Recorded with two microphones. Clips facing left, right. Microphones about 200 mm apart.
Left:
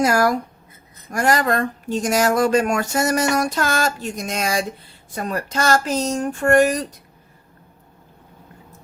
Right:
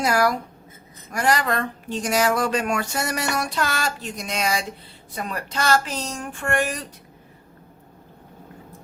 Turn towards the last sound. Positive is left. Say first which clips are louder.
# left 9 dB
turn(degrees=40)  # may be behind; listen again after turning